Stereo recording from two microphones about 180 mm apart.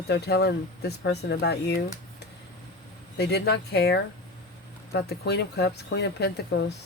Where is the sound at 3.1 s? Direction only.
65° left (ahead or behind).